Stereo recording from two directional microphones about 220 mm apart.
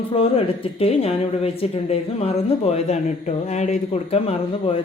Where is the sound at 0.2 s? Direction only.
25° left (ahead or behind).